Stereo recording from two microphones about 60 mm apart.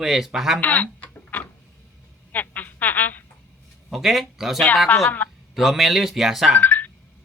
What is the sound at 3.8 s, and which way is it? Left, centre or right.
Speech, centre.